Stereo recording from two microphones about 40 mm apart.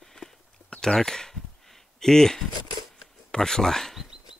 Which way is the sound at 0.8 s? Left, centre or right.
Centre.